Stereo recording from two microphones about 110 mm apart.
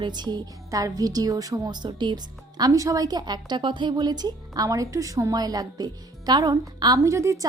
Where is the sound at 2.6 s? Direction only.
30° right (ahead or behind).